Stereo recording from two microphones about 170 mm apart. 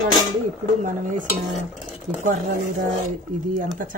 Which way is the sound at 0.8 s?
50° right (ahead or behind).